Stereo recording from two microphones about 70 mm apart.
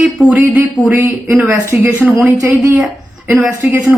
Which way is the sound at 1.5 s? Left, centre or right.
Right.